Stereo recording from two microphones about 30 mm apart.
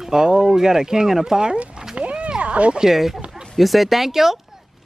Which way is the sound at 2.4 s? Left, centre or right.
Right.